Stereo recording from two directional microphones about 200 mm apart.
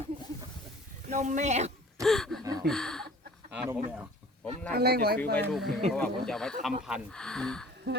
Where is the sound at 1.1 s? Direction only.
35° right (ahead or behind).